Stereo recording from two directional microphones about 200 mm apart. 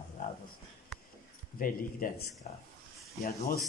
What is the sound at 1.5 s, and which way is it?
Speech, 45° left (ahead or behind).